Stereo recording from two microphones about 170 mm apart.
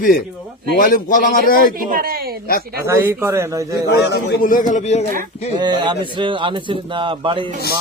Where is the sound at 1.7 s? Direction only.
55° right (ahead or behind).